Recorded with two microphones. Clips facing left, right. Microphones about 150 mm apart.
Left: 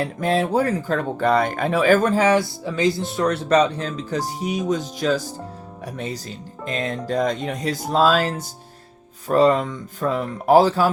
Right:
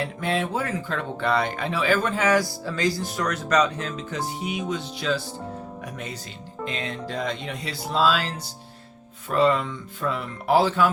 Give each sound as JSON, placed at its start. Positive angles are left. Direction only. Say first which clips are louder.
{"t": 0.0, "sound": "speech", "louder": "left 5 dB", "side_deg": 40}
{"t": 6.7, "sound": "speech", "louder": "left 7 dB", "side_deg": 45}